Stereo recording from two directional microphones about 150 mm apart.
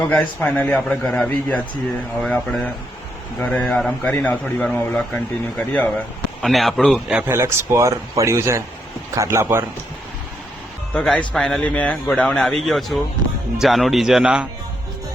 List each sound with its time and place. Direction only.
0.0 s a man's voice: 10° left (ahead or behind)
7.3 s a man's voice: 15° right (ahead or behind)
10.9 s a man's voice: 10° left (ahead or behind)